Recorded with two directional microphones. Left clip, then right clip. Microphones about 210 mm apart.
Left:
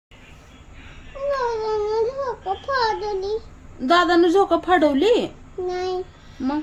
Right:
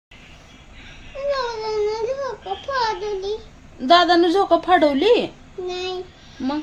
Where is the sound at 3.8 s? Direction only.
Centre (ahead or behind).